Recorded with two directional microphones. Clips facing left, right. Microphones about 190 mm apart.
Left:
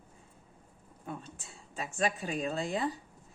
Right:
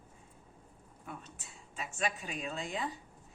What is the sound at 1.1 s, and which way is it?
Speech, 30° left (ahead or behind).